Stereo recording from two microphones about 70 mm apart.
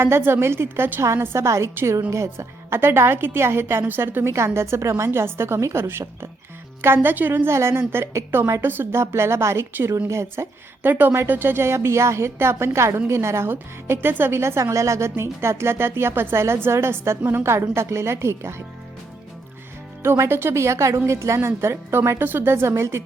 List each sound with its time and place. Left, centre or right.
0.0 s a woman's voice: right
20.0 s a woman's voice: right